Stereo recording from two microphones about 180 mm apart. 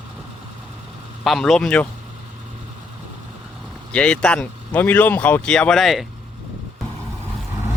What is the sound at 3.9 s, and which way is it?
Speech, 5° left (ahead or behind).